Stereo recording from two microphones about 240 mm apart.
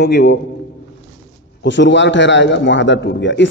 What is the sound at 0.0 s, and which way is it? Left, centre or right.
Speech, left.